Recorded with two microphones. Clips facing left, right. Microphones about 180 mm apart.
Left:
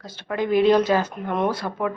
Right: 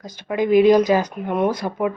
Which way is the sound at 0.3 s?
15° right (ahead or behind).